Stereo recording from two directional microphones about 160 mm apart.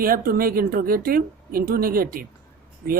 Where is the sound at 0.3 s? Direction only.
65° right (ahead or behind).